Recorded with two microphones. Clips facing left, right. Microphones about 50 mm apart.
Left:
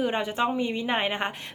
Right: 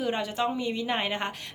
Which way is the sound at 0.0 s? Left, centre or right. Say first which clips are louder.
Left 2 dB; left.